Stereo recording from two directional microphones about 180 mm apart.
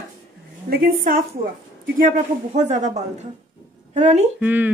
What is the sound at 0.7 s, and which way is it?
Speech, 55° right (ahead or behind).